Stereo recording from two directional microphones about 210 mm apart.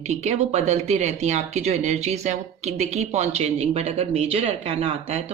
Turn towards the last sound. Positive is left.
turn(degrees=-30)  # may be behind; listen again after turning